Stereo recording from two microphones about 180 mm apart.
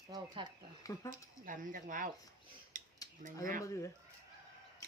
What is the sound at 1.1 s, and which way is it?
Speech, 45° right (ahead or behind).